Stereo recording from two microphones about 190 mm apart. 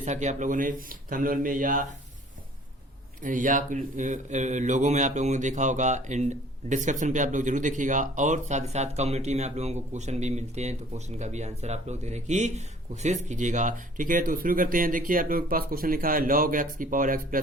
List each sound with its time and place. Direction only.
0.0 s speech: 40° right (ahead or behind)
3.2 s speech: 45° right (ahead or behind)